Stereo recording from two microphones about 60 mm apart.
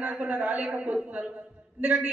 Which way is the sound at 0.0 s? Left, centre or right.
Right.